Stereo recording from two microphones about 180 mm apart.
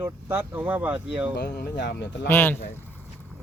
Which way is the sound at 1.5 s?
65° left (ahead or behind).